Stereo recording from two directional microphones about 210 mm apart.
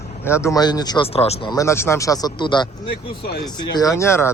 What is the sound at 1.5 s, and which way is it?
Speech, 15° left (ahead or behind).